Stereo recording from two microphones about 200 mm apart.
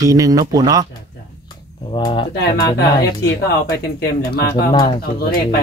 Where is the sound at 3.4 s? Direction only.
50° left (ahead or behind).